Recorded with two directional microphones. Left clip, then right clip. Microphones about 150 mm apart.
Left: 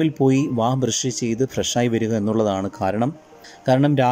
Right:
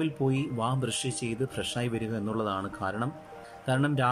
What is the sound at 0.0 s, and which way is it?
Speech, 30° left (ahead or behind).